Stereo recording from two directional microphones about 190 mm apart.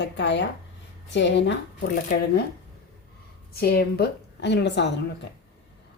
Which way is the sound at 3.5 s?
55° left (ahead or behind).